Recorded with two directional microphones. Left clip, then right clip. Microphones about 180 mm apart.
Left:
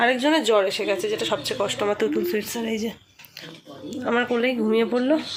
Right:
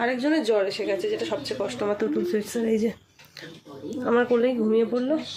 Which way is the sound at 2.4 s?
45° right (ahead or behind).